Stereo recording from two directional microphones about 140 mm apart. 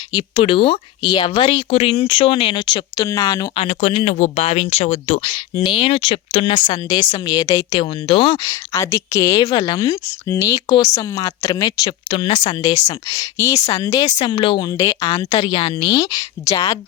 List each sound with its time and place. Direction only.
0.1 s speech: 40° left (ahead or behind)
3.5 s speech: 50° left (ahead or behind)
5.3 s speech: 35° left (ahead or behind)
7.8 s speech: 40° left (ahead or behind)
8.4 s speech: 25° left (ahead or behind)
15.4 s speech: 40° left (ahead or behind); by 16.7 s 25° left (ahead or behind)